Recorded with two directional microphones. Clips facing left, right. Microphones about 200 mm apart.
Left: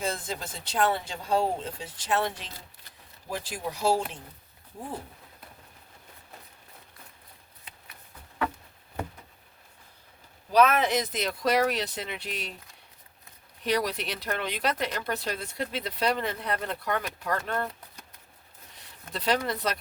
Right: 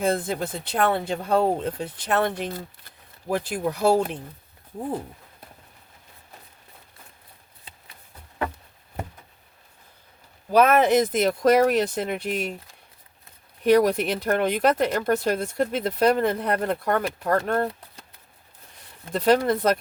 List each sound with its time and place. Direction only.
0.0 s speech: 60° right (ahead or behind)
10.5 s speech: 50° right (ahead or behind)
13.7 s speech: 50° right (ahead or behind)
19.1 s speech: 50° right (ahead or behind)